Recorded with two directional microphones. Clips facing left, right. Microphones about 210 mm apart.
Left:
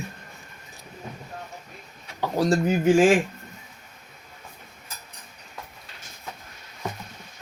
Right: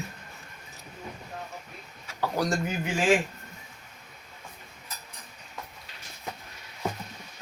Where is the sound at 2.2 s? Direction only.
25° left (ahead or behind).